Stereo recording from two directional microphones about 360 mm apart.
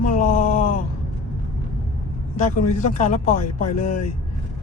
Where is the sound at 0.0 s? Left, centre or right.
Left.